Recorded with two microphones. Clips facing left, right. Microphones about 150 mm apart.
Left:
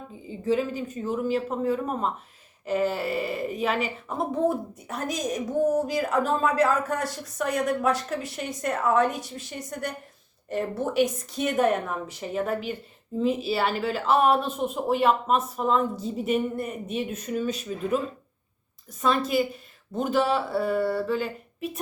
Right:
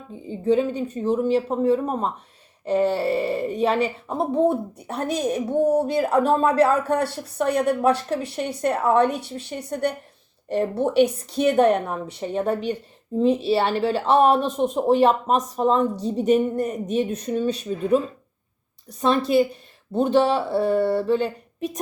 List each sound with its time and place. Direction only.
0.4 s a woman's voice: 30° right (ahead or behind)
10.5 s speech: 30° right (ahead or behind)
19.9 s speech: 30° right (ahead or behind)